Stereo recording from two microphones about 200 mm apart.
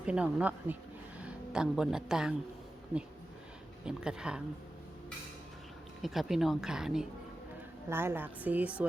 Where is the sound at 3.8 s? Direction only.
5° right (ahead or behind).